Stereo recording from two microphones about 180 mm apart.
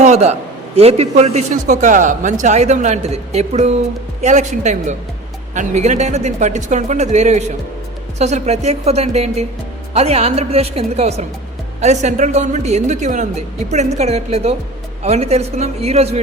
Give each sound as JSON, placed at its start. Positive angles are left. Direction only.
{"t": 0.0, "sound": "a man's voice", "side_deg": -40}